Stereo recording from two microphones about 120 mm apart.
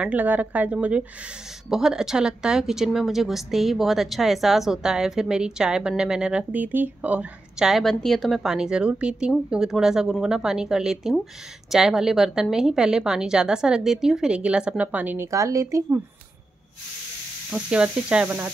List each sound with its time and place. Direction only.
0.0 s a woman's voice: 10° right (ahead or behind)
15.3 s speech: 25° right (ahead or behind)
17.5 s speech: 10° right (ahead or behind)